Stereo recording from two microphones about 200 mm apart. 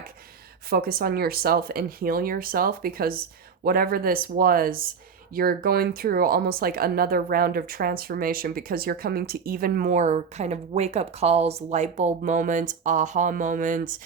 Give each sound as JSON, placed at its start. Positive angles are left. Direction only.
{"t": 0.7, "sound": "speech", "side_deg": -50}